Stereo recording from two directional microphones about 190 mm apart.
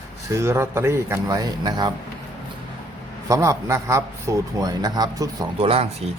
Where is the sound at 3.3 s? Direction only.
15° right (ahead or behind).